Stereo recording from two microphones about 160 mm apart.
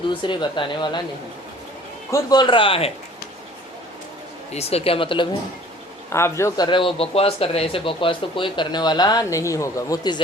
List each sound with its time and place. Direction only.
0.1 s speech: 30° left (ahead or behind)
2.0 s speech: 20° left (ahead or behind)
4.5 s speech: 40° left (ahead or behind)
6.1 s speech: 15° left (ahead or behind)
6.7 s speech: 30° left (ahead or behind)